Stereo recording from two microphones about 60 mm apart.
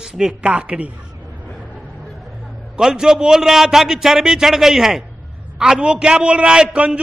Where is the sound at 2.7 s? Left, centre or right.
Centre.